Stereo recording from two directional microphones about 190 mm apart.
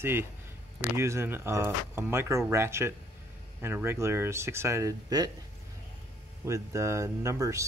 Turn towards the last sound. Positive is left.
turn(degrees=-15)  # may be behind; listen again after turning